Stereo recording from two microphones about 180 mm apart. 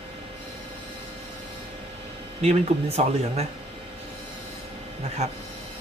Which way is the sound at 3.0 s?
35° right (ahead or behind).